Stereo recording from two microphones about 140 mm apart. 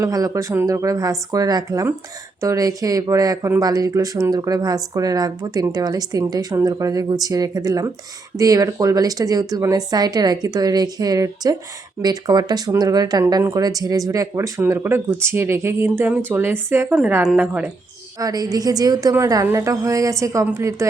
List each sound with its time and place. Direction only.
0.0 s speech: 25° right (ahead or behind)
18.2 s speech: 25° right (ahead or behind)